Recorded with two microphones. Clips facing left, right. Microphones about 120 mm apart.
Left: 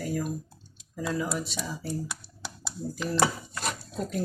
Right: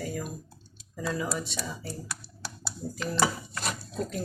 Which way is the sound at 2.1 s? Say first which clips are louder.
Even; 15° left (ahead or behind).